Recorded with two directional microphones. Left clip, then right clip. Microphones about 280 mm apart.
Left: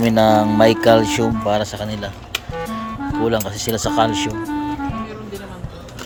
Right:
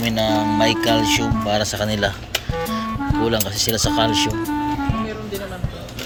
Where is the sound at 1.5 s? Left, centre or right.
Centre.